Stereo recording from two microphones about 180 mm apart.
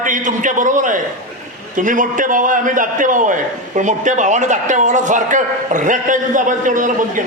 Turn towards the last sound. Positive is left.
turn(degrees=-45)  # may be behind; listen again after turning